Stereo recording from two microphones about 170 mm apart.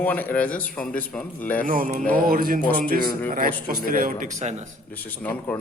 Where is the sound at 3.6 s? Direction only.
55° right (ahead or behind).